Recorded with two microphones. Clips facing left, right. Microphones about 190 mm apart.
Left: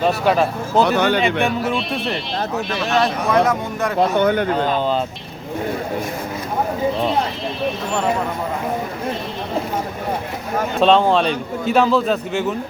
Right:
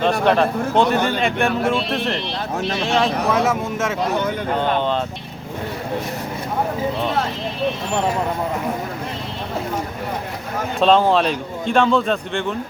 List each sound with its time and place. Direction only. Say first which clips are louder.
0.0 s a man's voice: even; 5° left (ahead or behind)
0.9 s a man's voice: left 2 dB; 70° left (ahead or behind)
1.2 s a man's voice: even; centre (ahead or behind)
3.9 s speech: left 5 dB; 65° left (ahead or behind)
10.8 s a man's voice: even; centre (ahead or behind)